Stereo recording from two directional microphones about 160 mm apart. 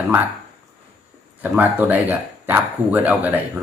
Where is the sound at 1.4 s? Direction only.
10° right (ahead or behind).